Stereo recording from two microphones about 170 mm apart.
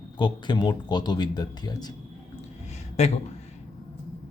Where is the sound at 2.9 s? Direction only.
40° left (ahead or behind).